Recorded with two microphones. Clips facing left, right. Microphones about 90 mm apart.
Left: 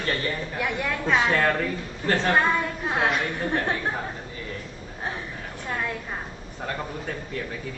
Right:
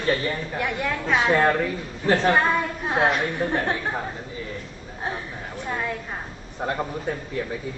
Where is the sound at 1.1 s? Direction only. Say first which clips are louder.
Right 2 dB; 15° right (ahead or behind).